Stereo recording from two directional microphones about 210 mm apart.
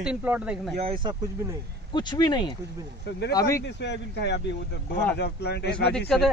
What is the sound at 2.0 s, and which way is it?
Speech, 20° left (ahead or behind).